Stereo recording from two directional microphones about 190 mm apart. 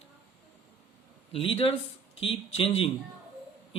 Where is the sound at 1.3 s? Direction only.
30° left (ahead or behind).